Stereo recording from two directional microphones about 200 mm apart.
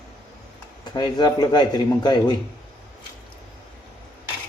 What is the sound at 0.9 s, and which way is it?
Speech, 20° left (ahead or behind).